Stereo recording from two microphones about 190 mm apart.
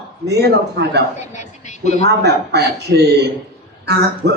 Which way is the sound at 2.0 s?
60° right (ahead or behind).